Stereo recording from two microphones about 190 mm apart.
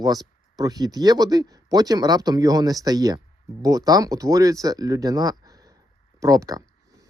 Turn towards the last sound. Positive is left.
turn(degrees=-20)  # may be behind; listen again after turning